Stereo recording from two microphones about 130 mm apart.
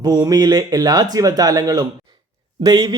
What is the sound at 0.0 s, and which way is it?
Speech, 30° right (ahead or behind).